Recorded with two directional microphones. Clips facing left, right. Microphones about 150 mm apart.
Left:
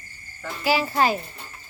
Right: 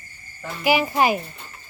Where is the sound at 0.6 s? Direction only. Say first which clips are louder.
Right 2 dB; 15° right (ahead or behind).